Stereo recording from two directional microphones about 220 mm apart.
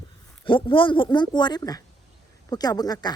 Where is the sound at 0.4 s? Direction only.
20° left (ahead or behind).